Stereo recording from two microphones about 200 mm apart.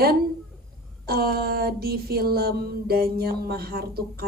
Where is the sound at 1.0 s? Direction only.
50° right (ahead or behind).